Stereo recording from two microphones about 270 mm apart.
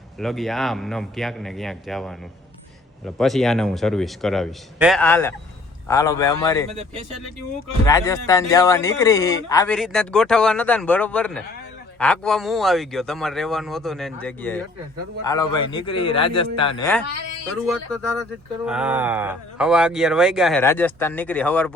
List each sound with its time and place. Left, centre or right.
0.2 s speech: centre
3.2 s speech: centre
7.9 s speech: centre
9.7 s a man's voice: centre
17.7 s speech: centre